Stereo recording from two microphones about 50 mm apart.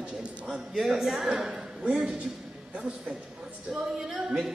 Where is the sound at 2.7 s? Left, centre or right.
Right.